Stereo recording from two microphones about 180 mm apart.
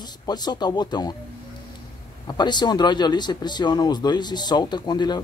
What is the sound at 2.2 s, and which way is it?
Speech, 25° left (ahead or behind).